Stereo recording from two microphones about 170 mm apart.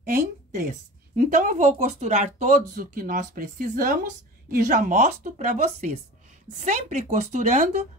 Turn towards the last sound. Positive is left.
turn(degrees=-45)  # may be behind; listen again after turning